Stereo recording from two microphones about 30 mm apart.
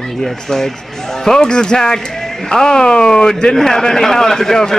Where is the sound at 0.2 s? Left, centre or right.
Centre.